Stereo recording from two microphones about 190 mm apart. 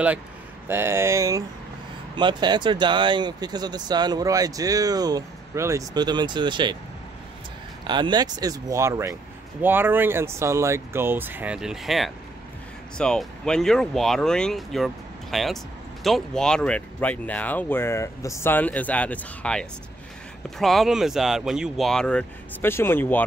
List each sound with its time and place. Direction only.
0.7 s speech: 10° right (ahead or behind)
7.8 s speech: 25° right (ahead or behind); by 23.2 s 10° left (ahead or behind)